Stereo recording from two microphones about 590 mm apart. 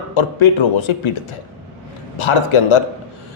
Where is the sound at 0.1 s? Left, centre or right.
Left.